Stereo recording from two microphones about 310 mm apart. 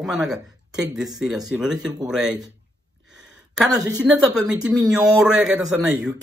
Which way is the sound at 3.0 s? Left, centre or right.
Centre.